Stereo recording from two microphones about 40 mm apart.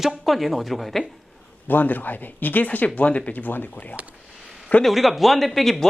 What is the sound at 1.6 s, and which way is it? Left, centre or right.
Speech, left.